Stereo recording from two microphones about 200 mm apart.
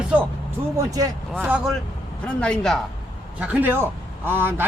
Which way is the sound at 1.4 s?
5° right (ahead or behind).